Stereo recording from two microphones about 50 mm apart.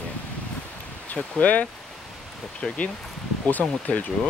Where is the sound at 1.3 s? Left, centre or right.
Left.